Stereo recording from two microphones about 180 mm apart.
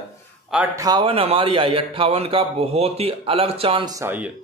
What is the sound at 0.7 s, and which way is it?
A man's voice, 20° right (ahead or behind).